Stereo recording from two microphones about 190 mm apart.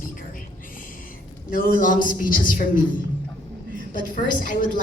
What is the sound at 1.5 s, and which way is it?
A woman's voice, 45° left (ahead or behind).